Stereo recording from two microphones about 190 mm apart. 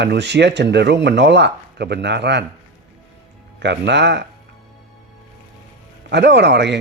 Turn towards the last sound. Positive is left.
turn(degrees=-65)  # may be behind; listen again after turning